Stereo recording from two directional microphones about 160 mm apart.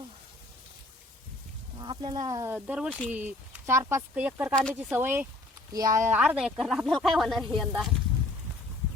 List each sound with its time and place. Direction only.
1.8 s speech: 30° right (ahead or behind)
2.6 s speech: 5° right (ahead or behind)
4.5 s speech: centre (ahead or behind)
4.9 s speech: 15° right (ahead or behind)